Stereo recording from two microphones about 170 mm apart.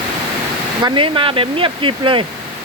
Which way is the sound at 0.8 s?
30° right (ahead or behind).